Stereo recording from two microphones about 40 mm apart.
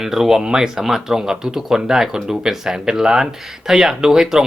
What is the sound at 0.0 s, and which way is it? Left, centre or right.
Speech, centre.